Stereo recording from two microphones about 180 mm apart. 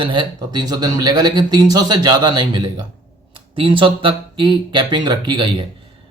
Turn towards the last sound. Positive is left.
turn(degrees=-25)  # may be behind; listen again after turning